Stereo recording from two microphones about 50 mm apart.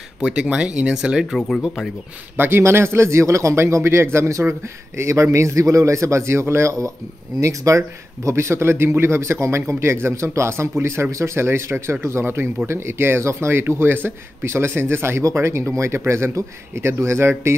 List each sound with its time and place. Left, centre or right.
0.2 s speech: centre
2.3 s a man's voice: right
15.2 s a man's voice: right